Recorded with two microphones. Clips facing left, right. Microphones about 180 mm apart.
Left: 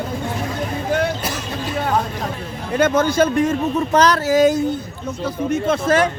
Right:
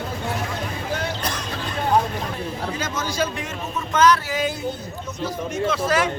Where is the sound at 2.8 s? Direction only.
60° left (ahead or behind); by 4.6 s 40° left (ahead or behind).